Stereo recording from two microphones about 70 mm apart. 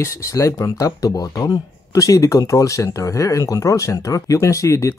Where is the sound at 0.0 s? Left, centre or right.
Left.